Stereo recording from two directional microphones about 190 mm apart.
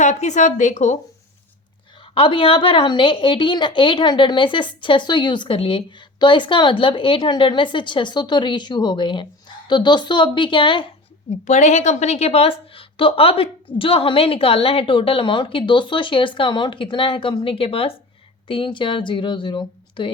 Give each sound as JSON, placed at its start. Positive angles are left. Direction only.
{"t": 0.0, "sound": "a woman's voice", "side_deg": 40}
{"t": 2.1, "sound": "a woman's voice", "side_deg": 30}
{"t": 11.3, "sound": "a woman's voice", "side_deg": 35}